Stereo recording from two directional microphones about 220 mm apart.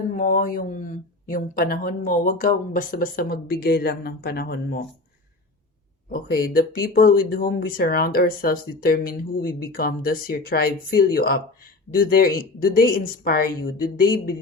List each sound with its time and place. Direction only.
0.2 s speech: 35° left (ahead or behind)
6.1 s speech: 40° left (ahead or behind)